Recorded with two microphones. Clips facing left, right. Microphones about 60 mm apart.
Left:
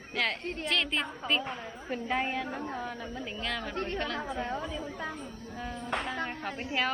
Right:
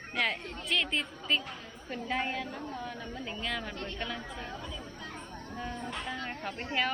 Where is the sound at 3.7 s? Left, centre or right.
Left.